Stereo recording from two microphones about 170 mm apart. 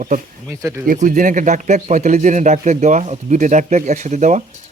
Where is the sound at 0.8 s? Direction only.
55° right (ahead or behind).